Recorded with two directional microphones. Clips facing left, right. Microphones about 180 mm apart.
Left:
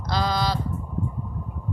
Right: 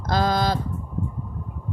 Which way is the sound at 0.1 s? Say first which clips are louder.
Right 3 dB; 50° right (ahead or behind).